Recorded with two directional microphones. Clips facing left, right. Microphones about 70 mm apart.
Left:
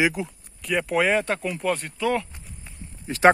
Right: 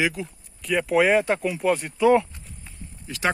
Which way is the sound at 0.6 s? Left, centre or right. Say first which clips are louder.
Right 2 dB; centre.